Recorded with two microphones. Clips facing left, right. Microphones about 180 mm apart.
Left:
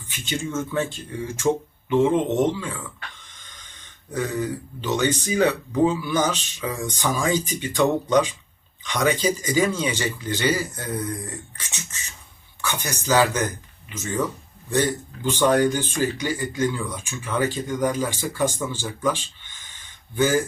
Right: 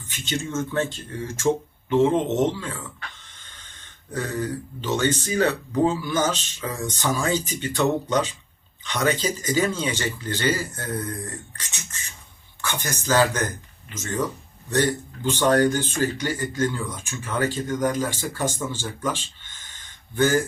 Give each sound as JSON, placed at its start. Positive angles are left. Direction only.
{"t": 0.5, "sound": "speech", "side_deg": 10}
{"t": 1.5, "sound": "speech", "side_deg": -10}
{"t": 2.1, "sound": "speech", "side_deg": 10}
{"t": 3.2, "sound": "hiss", "side_deg": 15}
{"t": 4.1, "sound": "speech", "side_deg": 15}